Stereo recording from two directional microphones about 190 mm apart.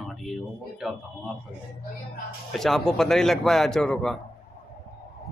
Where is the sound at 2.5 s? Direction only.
Centre (ahead or behind).